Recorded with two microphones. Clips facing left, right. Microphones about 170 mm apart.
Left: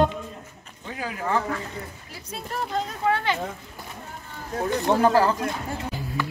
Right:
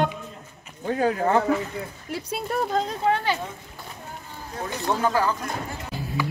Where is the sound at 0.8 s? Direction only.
40° right (ahead or behind).